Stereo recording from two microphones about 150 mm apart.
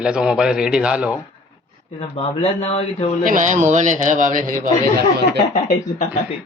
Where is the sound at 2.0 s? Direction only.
40° left (ahead or behind).